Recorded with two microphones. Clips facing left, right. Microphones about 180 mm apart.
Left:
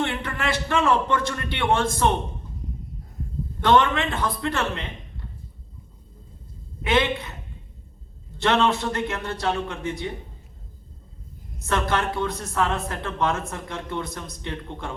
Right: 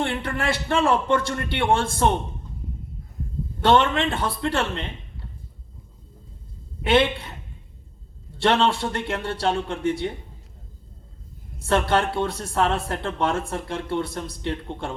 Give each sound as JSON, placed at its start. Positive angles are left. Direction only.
{"t": 0.0, "sound": "a man's voice", "side_deg": -30}
{"t": 3.6, "sound": "speech", "side_deg": -30}
{"t": 6.8, "sound": "speech", "side_deg": -30}
{"t": 8.4, "sound": "speech", "side_deg": -30}
{"t": 11.7, "sound": "speech", "side_deg": -30}